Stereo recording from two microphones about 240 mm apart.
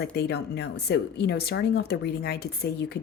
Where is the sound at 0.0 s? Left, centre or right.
Left.